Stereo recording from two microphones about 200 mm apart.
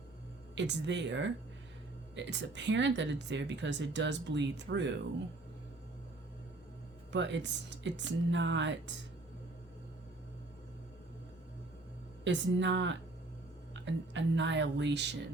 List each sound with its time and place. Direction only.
0.5 s speech: 60° right (ahead or behind)
7.1 s speech: 60° right (ahead or behind)
12.2 s speech: 65° right (ahead or behind)